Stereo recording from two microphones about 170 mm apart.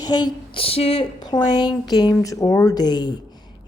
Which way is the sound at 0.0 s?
25° left (ahead or behind).